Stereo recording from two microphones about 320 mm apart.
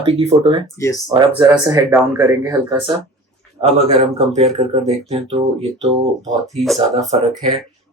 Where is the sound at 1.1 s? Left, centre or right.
Centre.